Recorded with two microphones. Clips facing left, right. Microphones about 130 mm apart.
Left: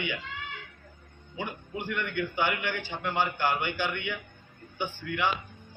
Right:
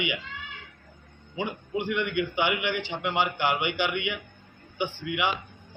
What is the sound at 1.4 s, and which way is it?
A man's voice, 20° right (ahead or behind).